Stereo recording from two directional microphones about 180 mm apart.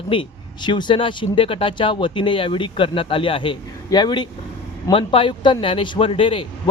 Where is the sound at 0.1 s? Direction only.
25° left (ahead or behind).